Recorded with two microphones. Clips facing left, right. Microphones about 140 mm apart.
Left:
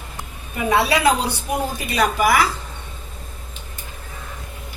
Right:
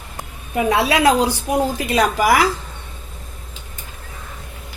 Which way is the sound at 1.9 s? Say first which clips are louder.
Even; 90° right.